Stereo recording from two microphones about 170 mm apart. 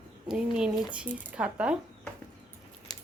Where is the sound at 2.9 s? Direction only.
25° left (ahead or behind).